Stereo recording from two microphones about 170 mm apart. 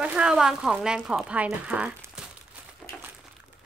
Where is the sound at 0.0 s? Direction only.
5° right (ahead or behind).